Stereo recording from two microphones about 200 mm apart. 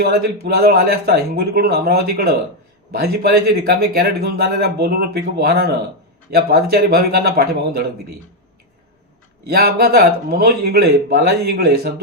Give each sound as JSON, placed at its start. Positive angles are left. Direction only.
{"t": 0.0, "sound": "a man's voice", "side_deg": -50}
{"t": 9.5, "sound": "a man's voice", "side_deg": -50}